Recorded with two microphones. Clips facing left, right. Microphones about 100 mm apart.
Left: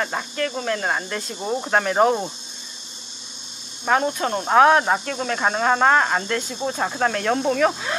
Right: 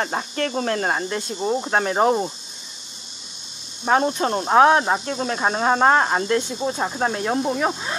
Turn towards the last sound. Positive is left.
turn(degrees=-20)  # may be behind; listen again after turning